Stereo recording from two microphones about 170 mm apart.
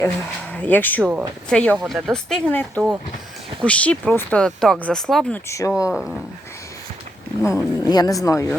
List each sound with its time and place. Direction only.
0.5 s speech: 10° left (ahead or behind)
1.0 s a woman's voice: 10° right (ahead or behind)
1.5 s speech: 5° left (ahead or behind)
1.7 s speech: 5° right (ahead or behind)
5.5 s a woman's voice: 20° left (ahead or behind)
5.7 s speech: 5° right (ahead or behind)
7.4 s a woman's voice: 20° left (ahead or behind)